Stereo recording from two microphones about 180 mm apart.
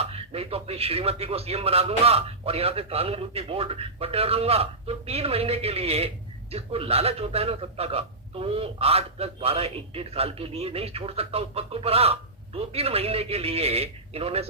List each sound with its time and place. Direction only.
0.0 s a man's voice: 35° right (ahead or behind)